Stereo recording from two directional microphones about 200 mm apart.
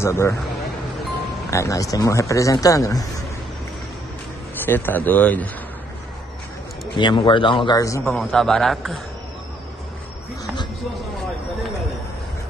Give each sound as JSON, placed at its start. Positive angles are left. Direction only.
{"t": 0.0, "sound": "a man's voice", "side_deg": 15}
{"t": 1.5, "sound": "a man's voice", "side_deg": 15}
{"t": 4.6, "sound": "a man's voice", "side_deg": 10}
{"t": 7.0, "sound": "a man's voice", "side_deg": 25}